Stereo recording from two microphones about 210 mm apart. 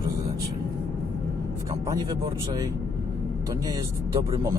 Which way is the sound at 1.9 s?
15° right (ahead or behind).